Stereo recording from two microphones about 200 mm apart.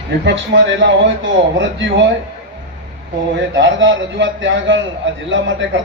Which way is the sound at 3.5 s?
65° right (ahead or behind).